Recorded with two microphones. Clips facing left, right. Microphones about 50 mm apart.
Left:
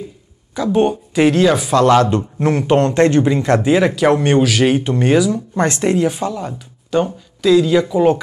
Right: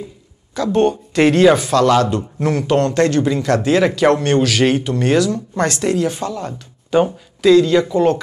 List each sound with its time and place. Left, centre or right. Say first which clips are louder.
0.6 s speech: even; centre
1.7 s speech: left 2 dB; left
3.6 s speech: right 2 dB; centre
4.2 s speech: left 2 dB; centre
4.5 s speech: left 1 dB; centre
4.7 s speech: left 2 dB; left
5.1 s speech: left 1 dB; centre
6.0 s speech: left 2 dB; centre
6.9 s speech: right 2 dB; centre
7.5 s speech: left 1 dB; centre